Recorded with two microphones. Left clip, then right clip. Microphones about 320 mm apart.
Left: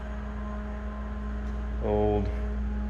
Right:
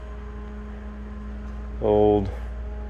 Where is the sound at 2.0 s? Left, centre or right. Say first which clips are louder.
Right 8 dB; right.